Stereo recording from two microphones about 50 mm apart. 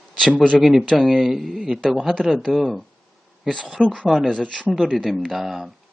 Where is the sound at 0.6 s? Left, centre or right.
Centre.